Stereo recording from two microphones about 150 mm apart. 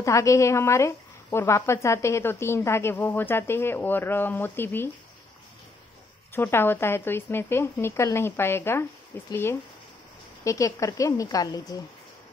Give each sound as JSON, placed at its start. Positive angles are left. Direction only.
{"t": 0.0, "sound": "speech", "side_deg": 20}
{"t": 6.3, "sound": "a woman's voice", "side_deg": 15}